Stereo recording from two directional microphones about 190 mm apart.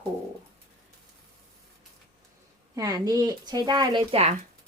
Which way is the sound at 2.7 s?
20° right (ahead or behind).